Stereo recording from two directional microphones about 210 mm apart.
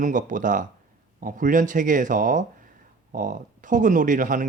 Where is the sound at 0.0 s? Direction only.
40° right (ahead or behind).